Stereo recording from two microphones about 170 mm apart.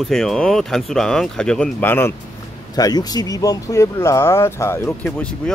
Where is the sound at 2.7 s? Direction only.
20° left (ahead or behind).